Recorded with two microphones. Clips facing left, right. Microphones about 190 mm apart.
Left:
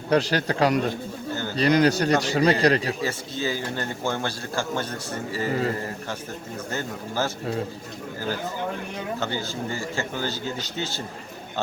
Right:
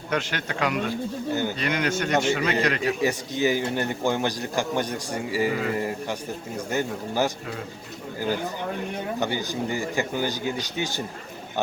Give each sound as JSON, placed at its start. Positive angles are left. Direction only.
{"t": 0.1, "sound": "a man's voice", "side_deg": 35}
{"t": 1.3, "sound": "a man's voice", "side_deg": -15}
{"t": 1.5, "sound": "a man's voice", "side_deg": 35}
{"t": 3.0, "sound": "a man's voice", "side_deg": -15}
{"t": 5.5, "sound": "a man's voice", "side_deg": 35}
{"t": 6.7, "sound": "a man's voice", "side_deg": -15}
{"t": 9.2, "sound": "a man's voice", "side_deg": -15}